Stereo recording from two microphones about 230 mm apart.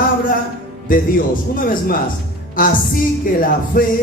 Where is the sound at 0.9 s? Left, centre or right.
Left.